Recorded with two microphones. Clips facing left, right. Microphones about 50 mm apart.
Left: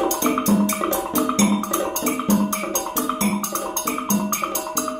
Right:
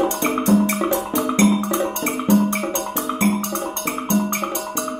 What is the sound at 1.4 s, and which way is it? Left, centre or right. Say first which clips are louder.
Music: right 3 dB; right.